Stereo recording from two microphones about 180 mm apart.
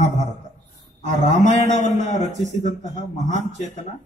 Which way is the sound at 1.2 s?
40° left (ahead or behind).